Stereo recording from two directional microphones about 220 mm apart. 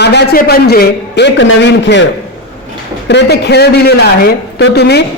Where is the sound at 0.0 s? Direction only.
50° left (ahead or behind).